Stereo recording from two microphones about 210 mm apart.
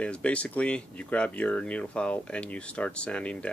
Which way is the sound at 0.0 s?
5° left (ahead or behind).